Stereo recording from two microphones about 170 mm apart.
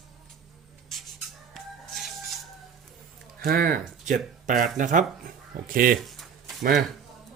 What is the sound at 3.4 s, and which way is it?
Speech, 60° right (ahead or behind).